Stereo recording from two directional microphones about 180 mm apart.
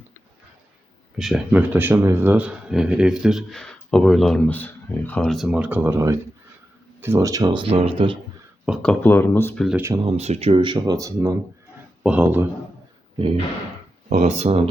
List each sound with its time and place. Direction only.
1.2 s speech: 5° right (ahead or behind); by 8.2 s 30° right (ahead or behind)
8.6 s speech: centre (ahead or behind)
9.6 s speech: 10° right (ahead or behind)
9.9 s speech: 30° right (ahead or behind); by 12.5 s 10° right (ahead or behind)
14.1 s speech: 40° right (ahead or behind)